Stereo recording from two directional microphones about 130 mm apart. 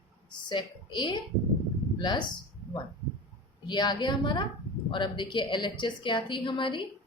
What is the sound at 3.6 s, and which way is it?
Speech, 35° left (ahead or behind).